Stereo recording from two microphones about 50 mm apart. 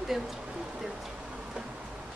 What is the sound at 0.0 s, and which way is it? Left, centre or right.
Speech, centre.